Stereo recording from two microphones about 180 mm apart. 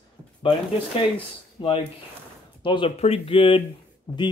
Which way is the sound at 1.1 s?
30° left (ahead or behind).